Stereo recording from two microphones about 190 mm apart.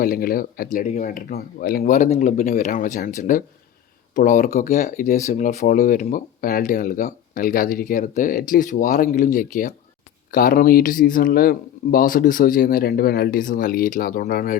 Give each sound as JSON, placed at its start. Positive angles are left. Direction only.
{"t": 0.0, "sound": "speech", "side_deg": 50}